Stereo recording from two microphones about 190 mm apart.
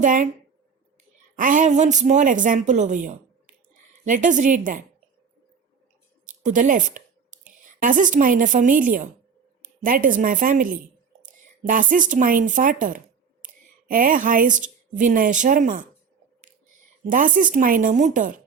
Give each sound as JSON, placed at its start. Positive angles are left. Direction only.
{"t": 0.0, "sound": "speech", "side_deg": -40}
{"t": 1.4, "sound": "a woman's voice", "side_deg": -45}
{"t": 6.4, "sound": "a sound", "side_deg": -40}
{"t": 7.8, "sound": "a woman's voice", "side_deg": -45}
{"t": 11.3, "sound": "a sound", "side_deg": -45}
{"t": 12.1, "sound": "a woman's voice", "side_deg": -45}
{"t": 17.0, "sound": "a woman's voice", "side_deg": -45}